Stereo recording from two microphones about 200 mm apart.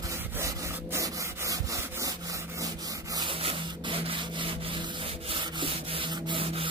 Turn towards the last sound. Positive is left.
turn(degrees=-30)  # may be behind; listen again after turning